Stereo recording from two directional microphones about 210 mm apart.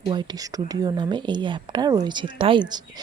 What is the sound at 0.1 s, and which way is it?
Speech, 20° right (ahead or behind).